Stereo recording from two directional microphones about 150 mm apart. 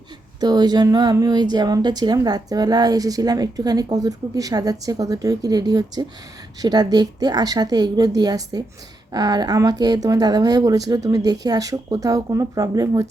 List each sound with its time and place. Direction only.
0.3 s speech: 25° right (ahead or behind)